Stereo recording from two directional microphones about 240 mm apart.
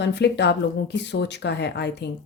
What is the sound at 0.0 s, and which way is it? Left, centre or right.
Speech, left.